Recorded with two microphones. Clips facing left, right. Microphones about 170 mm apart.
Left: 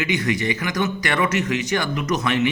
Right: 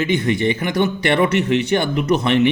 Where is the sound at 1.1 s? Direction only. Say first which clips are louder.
Right 5 dB; 60° right (ahead or behind).